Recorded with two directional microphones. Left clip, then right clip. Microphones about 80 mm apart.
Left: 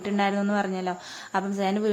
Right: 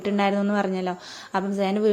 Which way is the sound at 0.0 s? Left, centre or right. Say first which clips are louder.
Right 2 dB; right.